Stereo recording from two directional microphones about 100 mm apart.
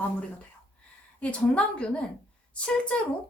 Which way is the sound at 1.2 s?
10° left (ahead or behind).